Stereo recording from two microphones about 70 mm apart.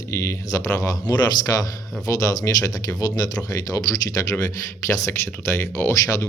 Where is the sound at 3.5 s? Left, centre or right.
Left.